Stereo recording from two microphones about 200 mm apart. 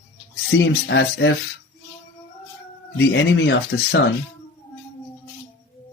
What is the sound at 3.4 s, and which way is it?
Speech, 60° left (ahead or behind).